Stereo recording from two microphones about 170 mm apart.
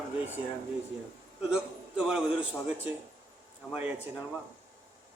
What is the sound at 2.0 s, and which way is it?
Speech, 5° right (ahead or behind).